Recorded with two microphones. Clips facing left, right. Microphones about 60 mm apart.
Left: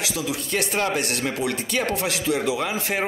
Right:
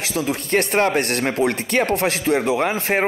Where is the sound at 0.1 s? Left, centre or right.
Right.